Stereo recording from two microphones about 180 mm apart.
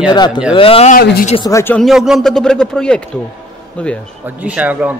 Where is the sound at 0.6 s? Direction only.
30° left (ahead or behind).